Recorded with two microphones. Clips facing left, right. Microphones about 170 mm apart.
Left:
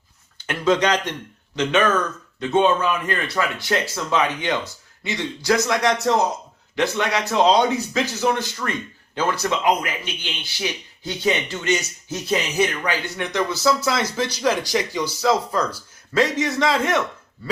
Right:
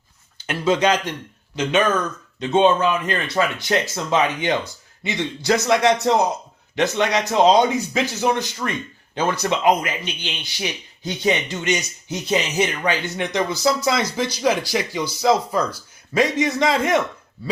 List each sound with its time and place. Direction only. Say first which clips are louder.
0.3 s speech: even; 10° right (ahead or behind)
2.4 s a man's voice: right 2 dB; 20° right (ahead or behind)